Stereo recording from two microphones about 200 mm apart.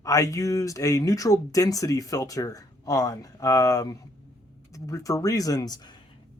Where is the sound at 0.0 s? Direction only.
15° left (ahead or behind).